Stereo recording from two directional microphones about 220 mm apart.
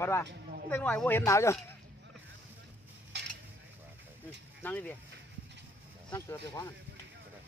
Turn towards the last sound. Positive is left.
turn(degrees=15)  # may be behind; listen again after turning